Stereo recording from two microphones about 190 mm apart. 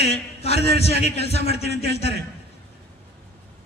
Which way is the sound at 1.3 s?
60° right (ahead or behind).